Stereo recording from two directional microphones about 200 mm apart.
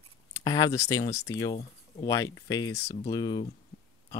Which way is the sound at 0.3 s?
20° left (ahead or behind).